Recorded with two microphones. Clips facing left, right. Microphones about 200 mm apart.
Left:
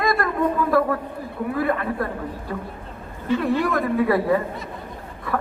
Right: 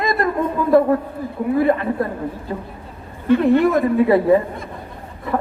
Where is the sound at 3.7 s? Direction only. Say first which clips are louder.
Right 5 dB; 25° right (ahead or behind).